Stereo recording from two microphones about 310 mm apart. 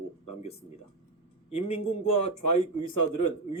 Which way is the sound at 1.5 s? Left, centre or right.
Centre.